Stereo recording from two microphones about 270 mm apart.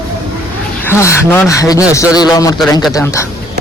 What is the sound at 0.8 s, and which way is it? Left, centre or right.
Speech, centre.